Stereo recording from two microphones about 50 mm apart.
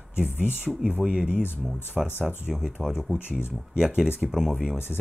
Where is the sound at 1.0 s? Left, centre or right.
Right.